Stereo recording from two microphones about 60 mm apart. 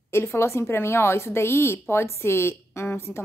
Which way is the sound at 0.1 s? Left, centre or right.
Left.